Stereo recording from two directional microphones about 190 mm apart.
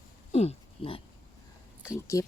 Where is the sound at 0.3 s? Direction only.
35° left (ahead or behind).